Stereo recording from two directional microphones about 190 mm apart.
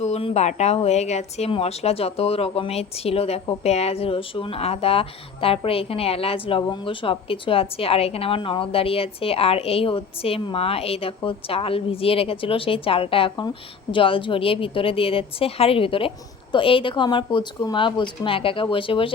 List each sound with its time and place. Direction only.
0.0 s speech: 30° left (ahead or behind)